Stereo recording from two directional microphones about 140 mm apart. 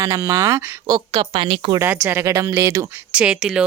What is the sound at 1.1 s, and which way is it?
Speech, 40° right (ahead or behind).